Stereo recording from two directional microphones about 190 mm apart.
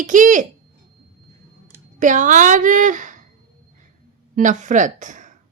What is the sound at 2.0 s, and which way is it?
A woman's voice, 40° right (ahead or behind).